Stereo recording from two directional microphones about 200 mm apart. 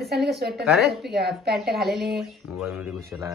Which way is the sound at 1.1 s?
55° right (ahead or behind).